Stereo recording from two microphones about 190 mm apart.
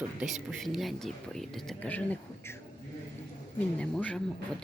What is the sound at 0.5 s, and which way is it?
Speech, centre (ahead or behind).